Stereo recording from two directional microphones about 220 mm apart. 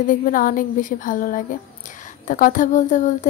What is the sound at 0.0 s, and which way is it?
Speech, 40° left (ahead or behind).